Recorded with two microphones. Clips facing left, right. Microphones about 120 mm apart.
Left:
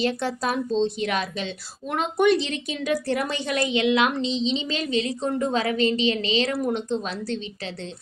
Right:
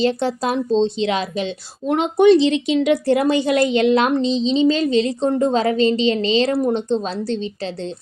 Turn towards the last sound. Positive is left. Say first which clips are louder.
# right 6 dB
turn(degrees=-30)  # may be behind; listen again after turning